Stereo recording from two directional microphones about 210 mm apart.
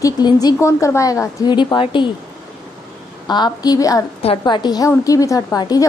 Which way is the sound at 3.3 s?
20° left (ahead or behind).